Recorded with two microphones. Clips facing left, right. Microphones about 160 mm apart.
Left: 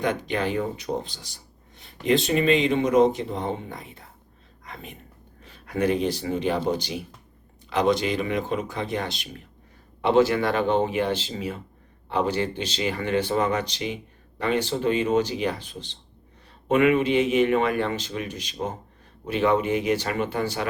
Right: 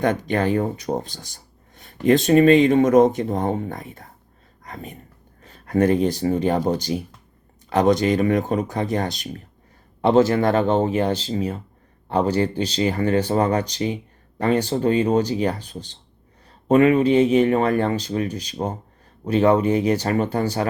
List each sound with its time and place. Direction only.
0.0 s a man's voice: 50° right (ahead or behind)